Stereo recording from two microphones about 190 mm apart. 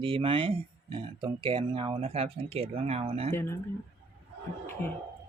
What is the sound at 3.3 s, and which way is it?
Speech, 10° left (ahead or behind).